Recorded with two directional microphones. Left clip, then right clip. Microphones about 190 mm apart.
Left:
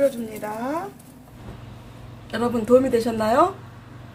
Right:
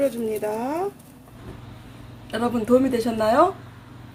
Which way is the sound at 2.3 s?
5° right (ahead or behind).